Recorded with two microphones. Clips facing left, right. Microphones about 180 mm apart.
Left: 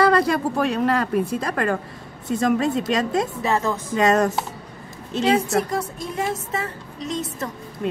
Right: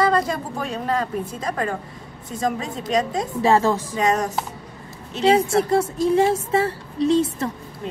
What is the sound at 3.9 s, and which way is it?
Speech, 65° left (ahead or behind).